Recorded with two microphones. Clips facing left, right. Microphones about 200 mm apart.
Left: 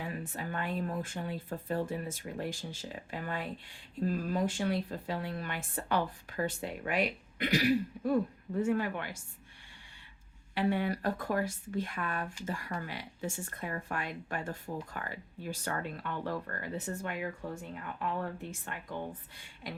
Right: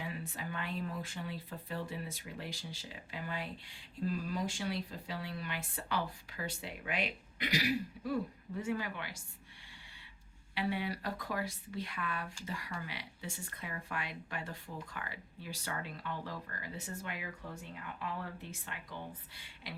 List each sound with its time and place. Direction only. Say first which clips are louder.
0.0 s speech: left 4 dB; 50° left (ahead or behind)
10.5 s speech: left 6 dB; 50° left (ahead or behind)